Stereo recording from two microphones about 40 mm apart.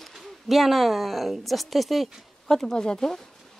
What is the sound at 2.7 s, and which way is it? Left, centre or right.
Speech, left.